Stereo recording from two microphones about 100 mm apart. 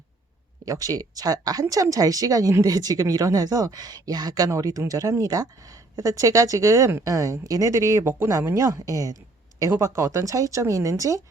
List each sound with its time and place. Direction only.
0.6 s speech: 35° right (ahead or behind)